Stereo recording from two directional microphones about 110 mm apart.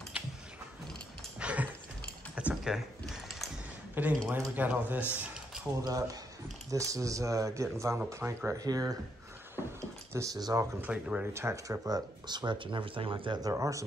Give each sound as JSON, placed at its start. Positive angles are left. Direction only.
{"t": 1.4, "sound": "a sound", "side_deg": -10}
{"t": 2.3, "sound": "typing", "side_deg": -5}
{"t": 3.9, "sound": "a man's voice", "side_deg": -15}
{"t": 5.1, "sound": "typing", "side_deg": -10}
{"t": 5.8, "sound": "speech", "side_deg": -30}
{"t": 8.5, "sound": "speech", "side_deg": -35}
{"t": 10.1, "sound": "speech", "side_deg": -30}
{"t": 10.8, "sound": "speech", "side_deg": -10}
{"t": 11.3, "sound": "speech", "side_deg": -25}
{"t": 13.4, "sound": "speech", "side_deg": -30}